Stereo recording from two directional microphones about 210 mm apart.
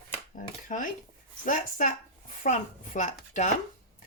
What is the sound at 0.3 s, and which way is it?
Dishes, 40° left (ahead or behind).